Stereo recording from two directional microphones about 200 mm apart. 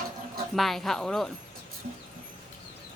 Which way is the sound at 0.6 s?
Centre (ahead or behind).